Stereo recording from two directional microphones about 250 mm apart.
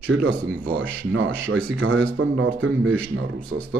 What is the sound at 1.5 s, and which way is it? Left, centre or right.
Speech, right.